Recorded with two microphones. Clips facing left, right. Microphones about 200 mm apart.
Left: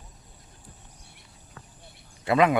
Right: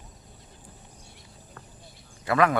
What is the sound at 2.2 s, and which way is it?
Speech, 20° left (ahead or behind).